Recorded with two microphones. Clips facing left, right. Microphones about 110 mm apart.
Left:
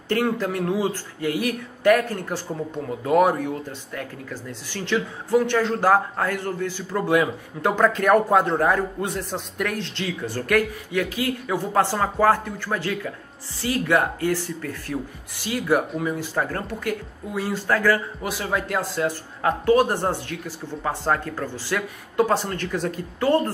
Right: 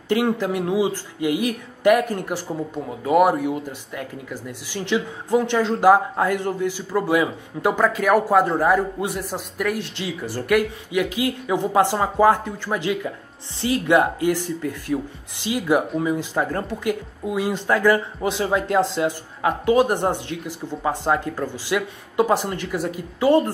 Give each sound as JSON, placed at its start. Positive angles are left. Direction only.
{"t": 0.1, "sound": "speech", "side_deg": -15}